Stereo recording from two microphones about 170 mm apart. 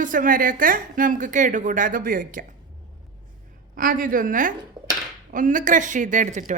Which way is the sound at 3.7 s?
55° right (ahead or behind).